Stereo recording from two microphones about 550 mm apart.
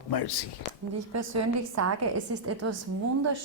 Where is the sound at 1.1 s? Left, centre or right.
Right.